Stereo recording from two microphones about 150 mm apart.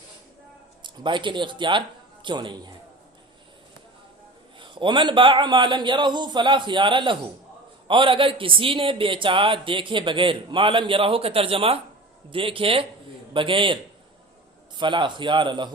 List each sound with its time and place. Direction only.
0.9 s a man's voice: 30° right (ahead or behind)
4.6 s a man's voice: 35° right (ahead or behind)
14.8 s a man's voice: 30° right (ahead or behind)